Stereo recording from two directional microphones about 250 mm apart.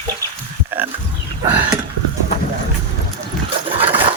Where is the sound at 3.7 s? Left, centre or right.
Right.